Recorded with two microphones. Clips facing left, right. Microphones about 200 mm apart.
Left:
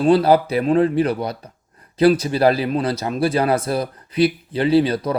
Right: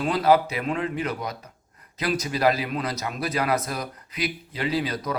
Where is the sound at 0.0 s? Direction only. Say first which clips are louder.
Left 6 dB; 30° left (ahead or behind).